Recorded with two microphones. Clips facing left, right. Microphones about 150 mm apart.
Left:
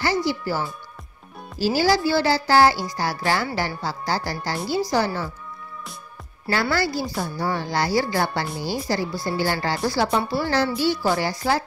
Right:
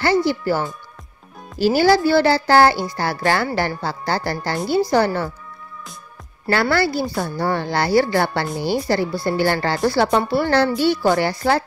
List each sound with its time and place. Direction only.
0.0 s speech: 60° right (ahead or behind)
6.4 s speech: 65° right (ahead or behind)